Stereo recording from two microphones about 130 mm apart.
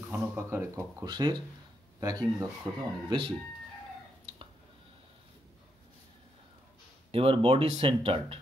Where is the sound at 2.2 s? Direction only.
15° right (ahead or behind).